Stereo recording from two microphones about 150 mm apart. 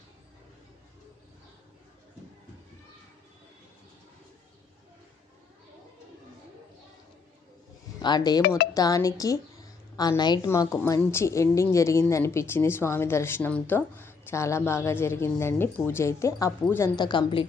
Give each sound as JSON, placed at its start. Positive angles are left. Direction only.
{"t": 8.0, "sound": "a woman's voice", "side_deg": 30}
{"t": 16.9, "sound": "speech", "side_deg": 30}